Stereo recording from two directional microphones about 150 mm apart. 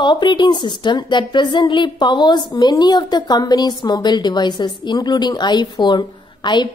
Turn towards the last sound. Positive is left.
turn(degrees=30)  # may be behind; listen again after turning